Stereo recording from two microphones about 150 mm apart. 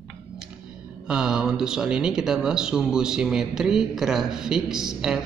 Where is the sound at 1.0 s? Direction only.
5° right (ahead or behind).